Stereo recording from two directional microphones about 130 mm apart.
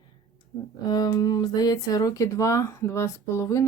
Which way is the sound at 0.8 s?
30° left (ahead or behind).